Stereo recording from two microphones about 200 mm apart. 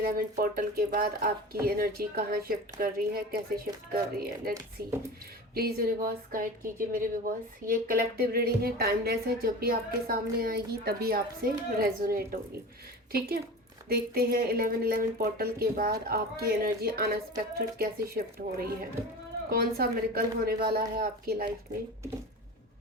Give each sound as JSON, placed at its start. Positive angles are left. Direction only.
{"t": 0.0, "sound": "a woman's voice", "side_deg": -45}
{"t": 19.5, "sound": "a woman's voice", "side_deg": -50}